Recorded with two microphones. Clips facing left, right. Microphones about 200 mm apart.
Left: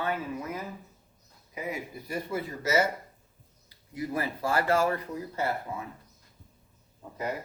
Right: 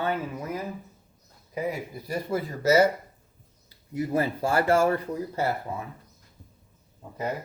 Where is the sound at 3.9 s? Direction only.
25° right (ahead or behind).